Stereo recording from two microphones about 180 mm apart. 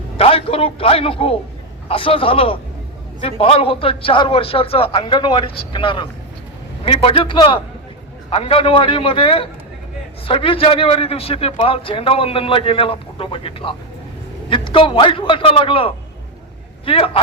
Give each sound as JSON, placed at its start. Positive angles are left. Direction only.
{"t": 0.2, "sound": "a man's voice", "side_deg": 30}